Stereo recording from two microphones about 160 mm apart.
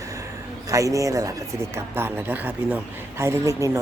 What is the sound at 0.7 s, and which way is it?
Speech, 20° right (ahead or behind).